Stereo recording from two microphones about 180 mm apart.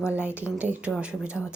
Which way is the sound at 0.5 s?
10° right (ahead or behind).